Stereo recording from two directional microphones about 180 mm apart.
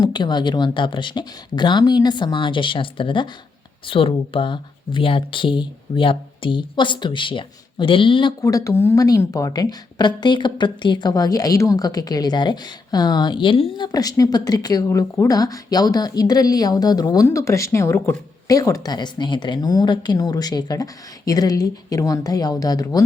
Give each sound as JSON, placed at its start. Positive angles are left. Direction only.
{"t": 0.0, "sound": "speech", "side_deg": 25}